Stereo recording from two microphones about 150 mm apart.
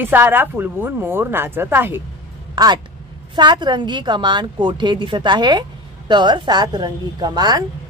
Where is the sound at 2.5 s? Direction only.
25° right (ahead or behind).